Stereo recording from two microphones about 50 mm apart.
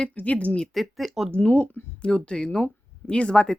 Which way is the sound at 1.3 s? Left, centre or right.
Left.